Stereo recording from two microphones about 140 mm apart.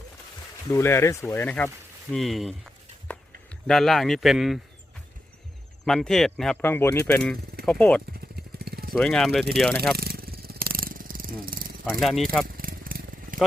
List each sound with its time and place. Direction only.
0.7 s speech: 20° left (ahead or behind)
2.0 s speech: centre (ahead or behind)
5.8 s speech: 5° left (ahead or behind)
8.4 s vehicle: 90° right
8.9 s speech: 5° left (ahead or behind)
10.0 s a sound: 90° right
11.9 s speech: centre (ahead or behind)
12.5 s vehicle: 90° right